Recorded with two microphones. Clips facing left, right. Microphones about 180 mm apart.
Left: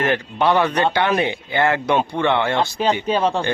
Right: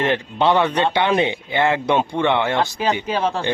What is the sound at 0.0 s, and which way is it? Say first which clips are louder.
Speech: even; 25° right (ahead or behind).